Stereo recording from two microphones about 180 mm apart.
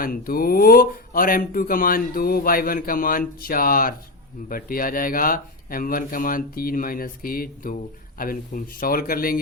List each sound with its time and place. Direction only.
0.0 s speech: 55° left (ahead or behind)